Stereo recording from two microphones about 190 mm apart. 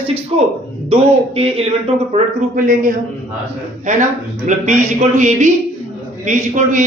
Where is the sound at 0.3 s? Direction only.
30° right (ahead or behind).